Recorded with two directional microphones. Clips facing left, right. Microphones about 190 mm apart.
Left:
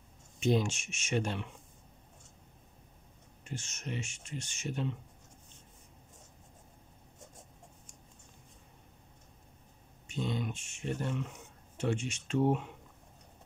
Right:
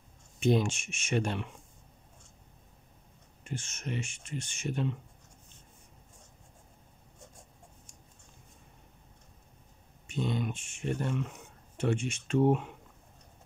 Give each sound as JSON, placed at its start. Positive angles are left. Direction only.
{"t": 0.4, "sound": "speech", "side_deg": -55}
{"t": 3.4, "sound": "speech", "side_deg": -55}
{"t": 10.0, "sound": "speech", "side_deg": -55}